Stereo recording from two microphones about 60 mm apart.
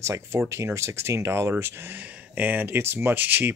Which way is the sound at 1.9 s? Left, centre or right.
Right.